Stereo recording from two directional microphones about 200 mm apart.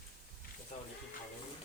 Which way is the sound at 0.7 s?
35° left (ahead or behind).